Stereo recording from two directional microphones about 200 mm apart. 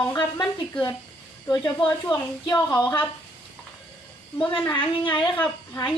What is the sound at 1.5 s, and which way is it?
Speech, 20° left (ahead or behind).